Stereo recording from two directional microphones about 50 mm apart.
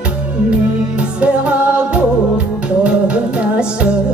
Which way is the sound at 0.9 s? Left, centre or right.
Right.